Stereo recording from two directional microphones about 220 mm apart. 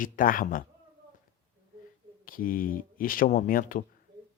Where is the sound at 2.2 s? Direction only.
40° left (ahead or behind).